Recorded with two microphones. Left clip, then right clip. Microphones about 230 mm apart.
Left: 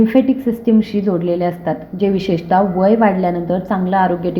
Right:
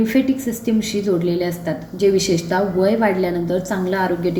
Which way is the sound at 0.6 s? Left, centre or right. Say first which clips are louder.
Left 5 dB; left.